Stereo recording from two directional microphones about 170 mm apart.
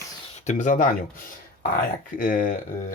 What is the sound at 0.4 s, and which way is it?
Speech, 45° left (ahead or behind).